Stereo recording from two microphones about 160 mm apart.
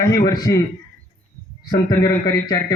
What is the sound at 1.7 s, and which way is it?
Speech, 25° left (ahead or behind).